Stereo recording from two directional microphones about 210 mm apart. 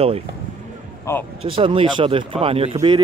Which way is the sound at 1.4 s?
25° right (ahead or behind).